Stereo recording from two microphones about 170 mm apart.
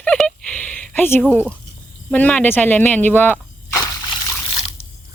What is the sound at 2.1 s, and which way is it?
Speech, 10° left (ahead or behind).